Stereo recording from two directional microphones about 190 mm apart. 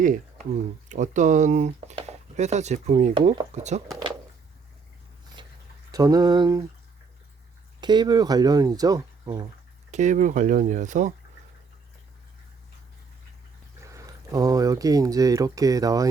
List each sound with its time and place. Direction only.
0.9 s speech: 40° right (ahead or behind)
5.4 s a sound: 25° right (ahead or behind)
5.9 s speech: 20° right (ahead or behind)
7.8 s speech: 25° right (ahead or behind)
9.9 s speech: 40° right (ahead or behind)
13.8 s speech: 15° right (ahead or behind)